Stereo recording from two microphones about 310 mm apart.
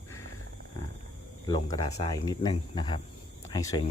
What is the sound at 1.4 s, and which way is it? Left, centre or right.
Speech, centre.